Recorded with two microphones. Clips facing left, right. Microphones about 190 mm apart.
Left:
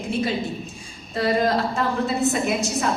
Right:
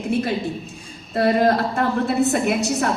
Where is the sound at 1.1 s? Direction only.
60° right (ahead or behind).